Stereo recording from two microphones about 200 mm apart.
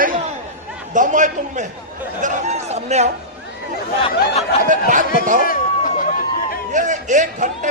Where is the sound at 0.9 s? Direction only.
40° right (ahead or behind).